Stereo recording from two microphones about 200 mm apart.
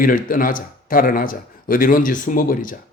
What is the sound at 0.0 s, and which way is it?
Speech, 45° left (ahead or behind).